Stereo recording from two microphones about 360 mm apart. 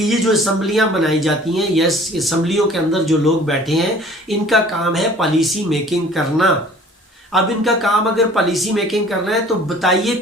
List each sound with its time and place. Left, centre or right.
0.0 s speech: centre